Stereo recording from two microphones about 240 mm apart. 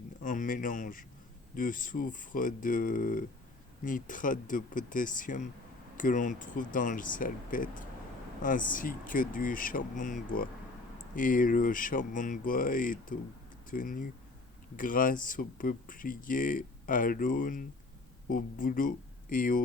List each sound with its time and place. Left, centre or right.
0.2 s speech: left